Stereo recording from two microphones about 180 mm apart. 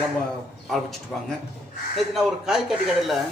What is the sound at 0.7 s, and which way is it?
Speech, centre (ahead or behind).